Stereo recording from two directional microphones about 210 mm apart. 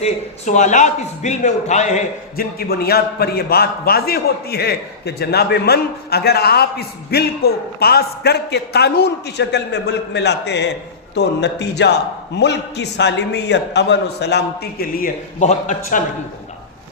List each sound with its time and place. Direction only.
0.0 s a man's voice: 35° left (ahead or behind)